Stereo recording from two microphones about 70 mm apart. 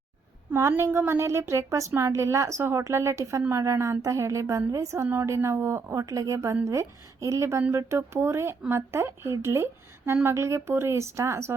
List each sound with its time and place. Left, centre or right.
0.8 s a woman's voice: right